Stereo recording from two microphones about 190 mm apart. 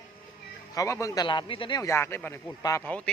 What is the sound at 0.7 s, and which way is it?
Speech, 15° left (ahead or behind).